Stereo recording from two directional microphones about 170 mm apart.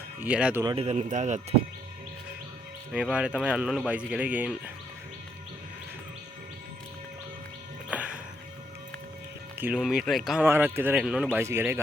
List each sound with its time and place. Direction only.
0.2 s speech: 10° right (ahead or behind)
0.8 s speech: 40° right (ahead or behind)
2.9 s speech: 5° right (ahead or behind)
7.9 s music: 5° right (ahead or behind)
9.6 s speech: 5° right (ahead or behind)